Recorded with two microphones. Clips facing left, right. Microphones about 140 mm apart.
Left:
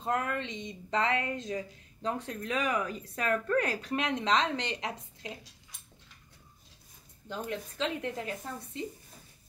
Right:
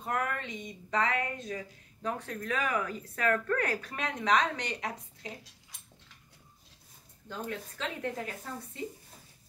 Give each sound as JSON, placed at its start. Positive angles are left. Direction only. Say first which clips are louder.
{"t": 0.0, "sound": "speech", "louder": "left 2 dB", "side_deg": 25}
{"t": 0.5, "sound": "speech", "louder": "left 1 dB", "side_deg": 90}
{"t": 0.8, "sound": "speech", "louder": "left 1 dB", "side_deg": 25}
{"t": 7.2, "sound": "speech", "louder": "left 2 dB", "side_deg": 20}